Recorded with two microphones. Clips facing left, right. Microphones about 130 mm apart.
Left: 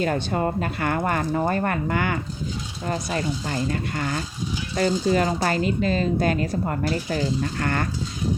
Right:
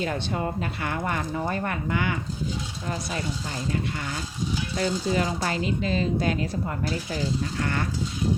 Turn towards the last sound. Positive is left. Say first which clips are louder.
# left 3 dB
turn(degrees=50)  # may be behind; listen again after turning